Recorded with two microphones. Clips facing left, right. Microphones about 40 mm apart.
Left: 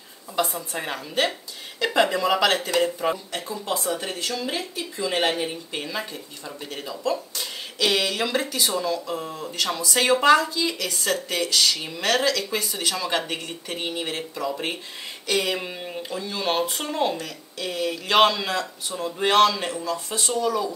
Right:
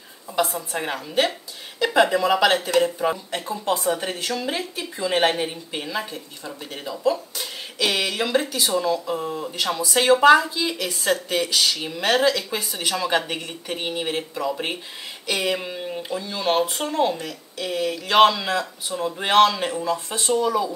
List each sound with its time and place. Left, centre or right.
0.4 s speech: centre
3.6 s speech: right; by 17.2 s centre
17.2 s speech: centre
19.8 s speech: right